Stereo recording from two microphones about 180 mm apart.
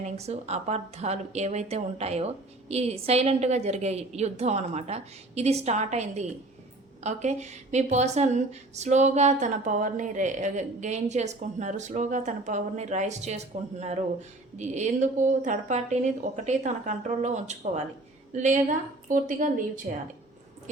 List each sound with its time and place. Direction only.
0.0 s a woman's voice: 35° right (ahead or behind)